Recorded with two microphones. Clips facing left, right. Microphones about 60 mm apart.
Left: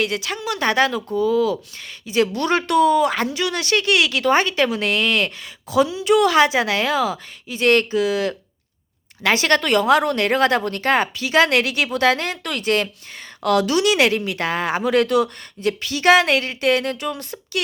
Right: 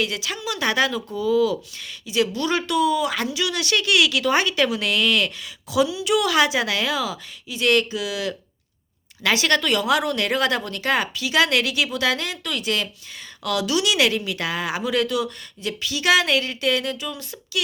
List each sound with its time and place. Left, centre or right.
0.0 s speech: left